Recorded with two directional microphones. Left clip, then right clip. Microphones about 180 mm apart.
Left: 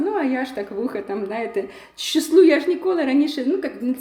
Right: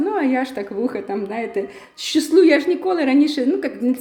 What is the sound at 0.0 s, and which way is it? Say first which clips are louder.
Speech: right 2 dB; 15° right (ahead or behind).